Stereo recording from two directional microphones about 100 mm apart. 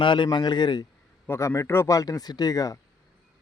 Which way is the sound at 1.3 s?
30° left (ahead or behind).